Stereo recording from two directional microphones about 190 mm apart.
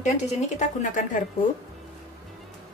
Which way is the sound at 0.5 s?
45° left (ahead or behind).